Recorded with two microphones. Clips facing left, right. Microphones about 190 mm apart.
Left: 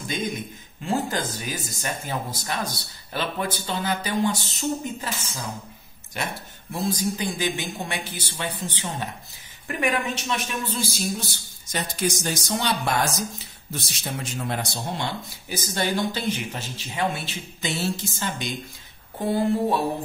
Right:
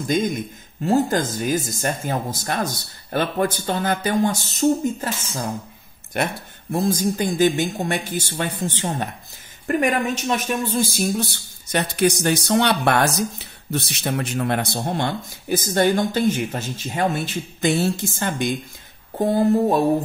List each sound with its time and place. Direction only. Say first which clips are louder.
0.8 s speech: right 7 dB; 45° right (ahead or behind)